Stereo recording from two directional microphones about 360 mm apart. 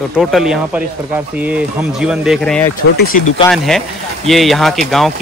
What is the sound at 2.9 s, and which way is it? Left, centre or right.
Speech, left.